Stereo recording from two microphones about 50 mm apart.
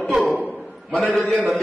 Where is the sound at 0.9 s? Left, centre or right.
Centre.